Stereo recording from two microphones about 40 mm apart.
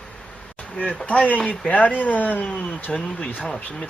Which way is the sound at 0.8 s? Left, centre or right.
Left.